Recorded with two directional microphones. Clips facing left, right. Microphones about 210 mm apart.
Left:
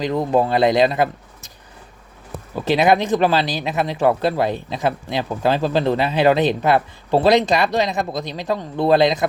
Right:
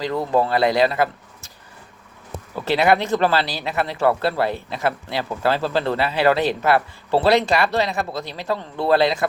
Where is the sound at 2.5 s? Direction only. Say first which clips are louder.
Left 2 dB; 15° left (ahead or behind).